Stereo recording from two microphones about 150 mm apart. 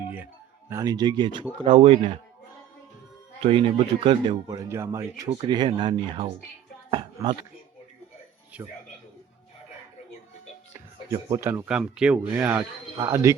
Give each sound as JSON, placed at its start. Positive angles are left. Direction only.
{"t": 0.0, "sound": "music", "side_deg": -10}
{"t": 0.7, "sound": "speech", "side_deg": -25}
{"t": 3.4, "sound": "speech", "side_deg": -35}
{"t": 8.5, "sound": "speech", "side_deg": -10}
{"t": 11.1, "sound": "speech", "side_deg": -20}
{"t": 13.0, "sound": "speech", "side_deg": -20}